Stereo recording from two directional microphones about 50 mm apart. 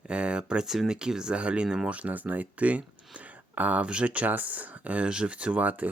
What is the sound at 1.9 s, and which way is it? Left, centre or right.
Speech, right.